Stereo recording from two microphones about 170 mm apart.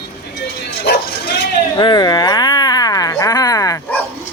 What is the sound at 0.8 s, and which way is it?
Bow-wow, 75° left (ahead or behind).